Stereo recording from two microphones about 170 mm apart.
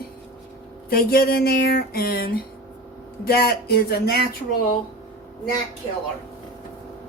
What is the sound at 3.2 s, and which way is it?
Speech, 65° left (ahead or behind).